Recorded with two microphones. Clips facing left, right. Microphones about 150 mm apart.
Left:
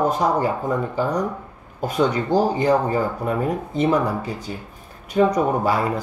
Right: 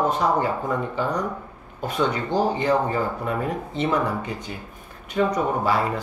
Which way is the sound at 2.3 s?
40° left (ahead or behind).